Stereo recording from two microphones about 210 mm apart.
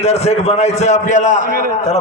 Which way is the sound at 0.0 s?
30° left (ahead or behind).